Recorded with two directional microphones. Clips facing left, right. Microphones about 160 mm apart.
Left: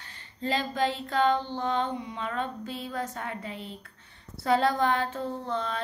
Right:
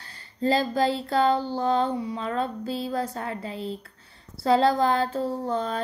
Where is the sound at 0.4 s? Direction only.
35° right (ahead or behind).